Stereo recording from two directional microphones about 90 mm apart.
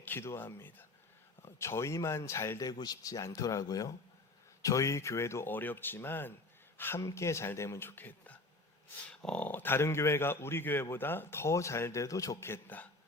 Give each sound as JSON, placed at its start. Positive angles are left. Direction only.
{"t": 0.0, "sound": "a man's voice", "side_deg": 25}
{"t": 2.6, "sound": "a man's voice", "side_deg": 45}